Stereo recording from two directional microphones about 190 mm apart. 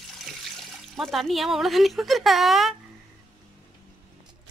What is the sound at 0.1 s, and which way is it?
Speech, centre (ahead or behind).